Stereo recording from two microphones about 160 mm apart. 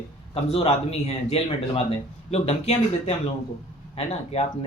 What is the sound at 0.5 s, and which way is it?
Speech, 40° left (ahead or behind).